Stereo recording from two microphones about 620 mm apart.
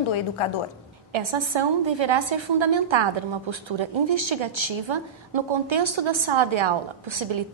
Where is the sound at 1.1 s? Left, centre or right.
Right.